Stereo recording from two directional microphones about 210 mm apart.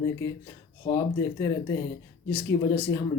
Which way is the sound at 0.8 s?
15° left (ahead or behind).